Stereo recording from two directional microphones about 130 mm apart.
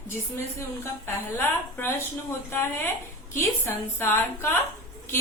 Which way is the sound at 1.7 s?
20° left (ahead or behind).